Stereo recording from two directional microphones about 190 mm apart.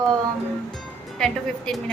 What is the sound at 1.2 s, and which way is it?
Speech, 5° left (ahead or behind).